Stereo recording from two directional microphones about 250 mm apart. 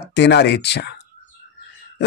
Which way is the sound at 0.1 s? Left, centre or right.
Left.